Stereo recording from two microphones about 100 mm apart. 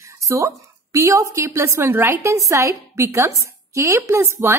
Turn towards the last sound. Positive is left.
turn(degrees=-25)  # may be behind; listen again after turning